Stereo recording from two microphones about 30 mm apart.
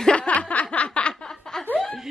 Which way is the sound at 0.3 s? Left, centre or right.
Left.